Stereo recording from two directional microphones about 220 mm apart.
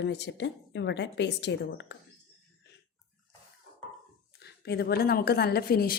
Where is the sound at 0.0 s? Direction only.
50° left (ahead or behind).